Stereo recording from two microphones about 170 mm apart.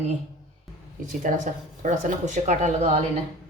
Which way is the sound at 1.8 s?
50° right (ahead or behind).